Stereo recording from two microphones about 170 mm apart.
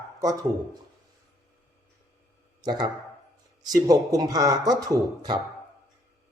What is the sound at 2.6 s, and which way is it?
Speech, 25° right (ahead or behind).